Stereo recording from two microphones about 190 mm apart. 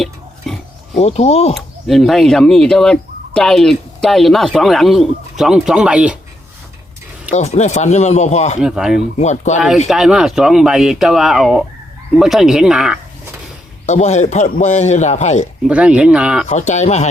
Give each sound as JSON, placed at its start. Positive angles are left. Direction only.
{"t": 0.0, "sound": "pig", "side_deg": 0}
{"t": 0.9, "sound": "a man's voice", "side_deg": 35}
{"t": 1.5, "sound": "fowl", "side_deg": 0}
{"t": 7.3, "sound": "a man's voice", "side_deg": 35}
{"t": 8.6, "sound": "fowl", "side_deg": -5}
{"t": 9.1, "sound": "a man's voice", "side_deg": 40}
{"t": 9.6, "sound": "fowl", "side_deg": 0}
{"t": 13.8, "sound": "a man's voice", "side_deg": 40}
{"t": 15.6, "sound": "fowl", "side_deg": -5}
{"t": 16.5, "sound": "a man's voice", "side_deg": 40}